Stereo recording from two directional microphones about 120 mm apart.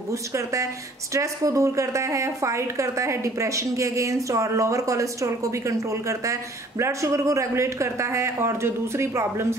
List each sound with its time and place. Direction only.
0.1 s a woman's voice: 25° right (ahead or behind)